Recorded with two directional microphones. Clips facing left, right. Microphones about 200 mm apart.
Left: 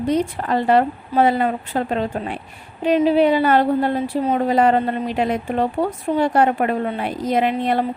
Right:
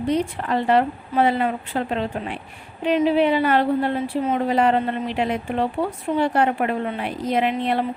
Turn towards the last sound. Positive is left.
turn(degrees=40)  # may be behind; listen again after turning